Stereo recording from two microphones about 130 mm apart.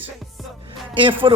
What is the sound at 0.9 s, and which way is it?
Speech, 40° right (ahead or behind).